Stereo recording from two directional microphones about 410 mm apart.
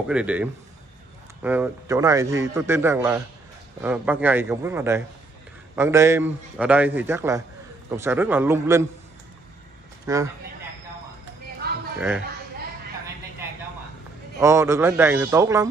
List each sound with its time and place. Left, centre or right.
0.1 s a man's voice: centre
10.0 s speech: centre
11.6 s a sound: right
14.4 s a man's voice: centre